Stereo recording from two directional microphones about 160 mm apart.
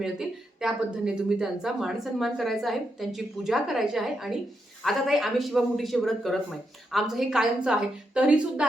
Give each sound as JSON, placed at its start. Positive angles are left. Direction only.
{"t": 0.0, "sound": "speech", "side_deg": -5}